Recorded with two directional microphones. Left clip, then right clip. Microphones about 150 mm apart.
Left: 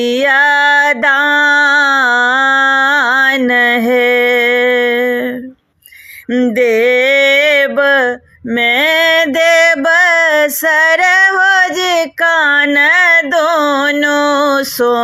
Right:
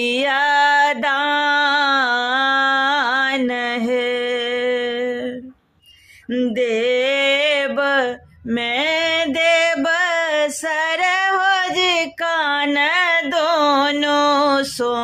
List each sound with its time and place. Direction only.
0.0 s music: 30° left (ahead or behind)
6.3 s mantra: 35° left (ahead or behind)